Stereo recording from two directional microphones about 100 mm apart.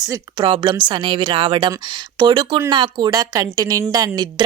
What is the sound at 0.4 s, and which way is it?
A woman's voice, 55° right (ahead or behind).